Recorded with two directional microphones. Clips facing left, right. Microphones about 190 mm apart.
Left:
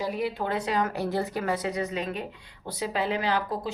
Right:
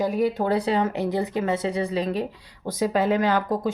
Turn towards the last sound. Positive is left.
turn(degrees=-45)  # may be behind; listen again after turning